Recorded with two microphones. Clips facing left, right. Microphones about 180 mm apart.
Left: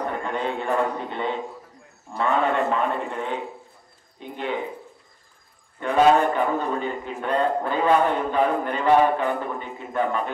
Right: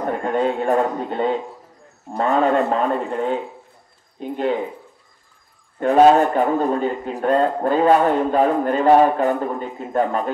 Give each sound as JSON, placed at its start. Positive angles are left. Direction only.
{"t": 0.0, "sound": "a man's voice", "side_deg": -45}
{"t": 5.8, "sound": "a man's voice", "side_deg": -45}